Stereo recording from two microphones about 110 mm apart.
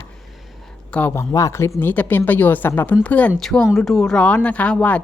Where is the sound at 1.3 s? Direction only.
25° left (ahead or behind); by 5.0 s 10° left (ahead or behind).